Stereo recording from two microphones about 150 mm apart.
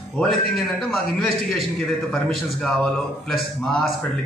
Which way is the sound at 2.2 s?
5° left (ahead or behind).